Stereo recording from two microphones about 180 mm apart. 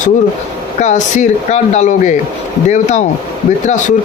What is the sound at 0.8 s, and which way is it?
Speech, 40° left (ahead or behind).